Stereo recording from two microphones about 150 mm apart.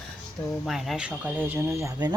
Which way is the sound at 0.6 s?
Centre (ahead or behind).